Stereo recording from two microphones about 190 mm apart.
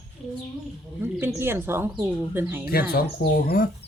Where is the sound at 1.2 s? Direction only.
10° right (ahead or behind).